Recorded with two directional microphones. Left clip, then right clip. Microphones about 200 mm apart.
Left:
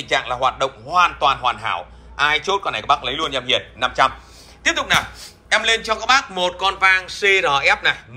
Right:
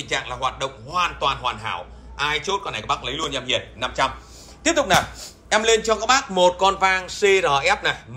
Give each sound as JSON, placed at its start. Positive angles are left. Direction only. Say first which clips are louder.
{"t": 0.0, "sound": "speech", "louder": "left 6 dB", "side_deg": -5}
{"t": 4.6, "sound": "a man's voice", "louder": "even", "side_deg": -25}